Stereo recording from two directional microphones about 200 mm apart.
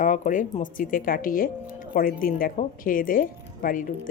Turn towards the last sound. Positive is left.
turn(degrees=45)  # may be behind; listen again after turning